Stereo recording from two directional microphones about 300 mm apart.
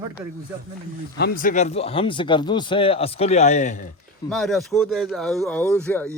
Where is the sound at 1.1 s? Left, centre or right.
Left.